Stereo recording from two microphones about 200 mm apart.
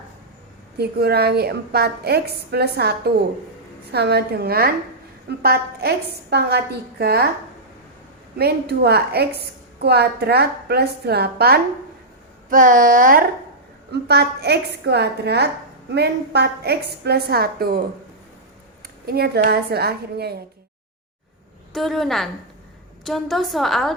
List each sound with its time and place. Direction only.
0.8 s a woman's voice: 50° right (ahead or behind)
8.4 s a woman's voice: 55° right (ahead or behind)
13.9 s a woman's voice: 55° right (ahead or behind)
19.0 s a woman's voice: 50° right (ahead or behind)
21.7 s a woman's voice: centre (ahead or behind)